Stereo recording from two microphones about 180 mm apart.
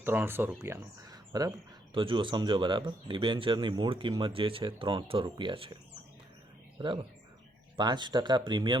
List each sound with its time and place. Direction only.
0.0 s speech: 10° right (ahead or behind); by 5.7 s 30° right (ahead or behind)
7.8 s speech: 25° right (ahead or behind)